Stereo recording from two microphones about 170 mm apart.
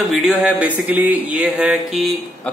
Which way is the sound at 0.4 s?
10° right (ahead or behind).